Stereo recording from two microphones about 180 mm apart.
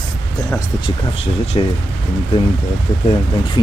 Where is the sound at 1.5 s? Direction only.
30° left (ahead or behind).